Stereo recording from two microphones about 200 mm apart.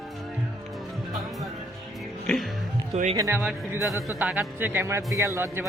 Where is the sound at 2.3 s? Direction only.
5° left (ahead or behind).